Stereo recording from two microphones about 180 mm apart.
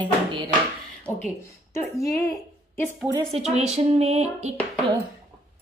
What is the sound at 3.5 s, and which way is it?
Female singing, 35° right (ahead or behind).